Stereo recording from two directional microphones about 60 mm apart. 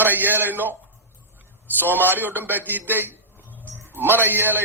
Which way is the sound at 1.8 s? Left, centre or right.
Right.